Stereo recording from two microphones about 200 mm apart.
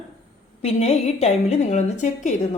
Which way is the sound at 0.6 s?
30° left (ahead or behind).